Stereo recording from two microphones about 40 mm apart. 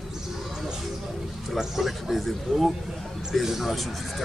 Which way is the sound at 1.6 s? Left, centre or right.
Centre.